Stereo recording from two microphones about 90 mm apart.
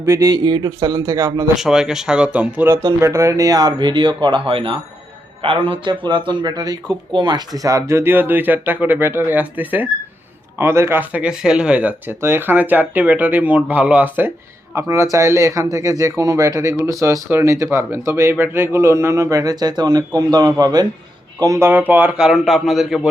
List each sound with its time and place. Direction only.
0.0 s speech: 35° right (ahead or behind)
0.3 s speech: 50° right (ahead or behind); by 1.5 s 35° right (ahead or behind)
1.5 s speech: 5° right (ahead or behind)
2.6 s speech: 30° right (ahead or behind); by 4.4 s 55° right (ahead or behind)
4.4 s a man's voice: 85° right; by 11.0 s 30° right (ahead or behind)
11.1 s speech: 10° right (ahead or behind)
12.2 s speech: 25° right (ahead or behind)
14.8 s speech: 35° right (ahead or behind)
21.6 s speech: 20° right (ahead or behind)
22.2 s a man's voice: centre (ahead or behind)